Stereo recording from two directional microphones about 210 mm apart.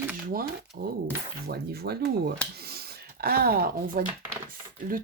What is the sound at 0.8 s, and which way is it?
Speech, 50° right (ahead or behind).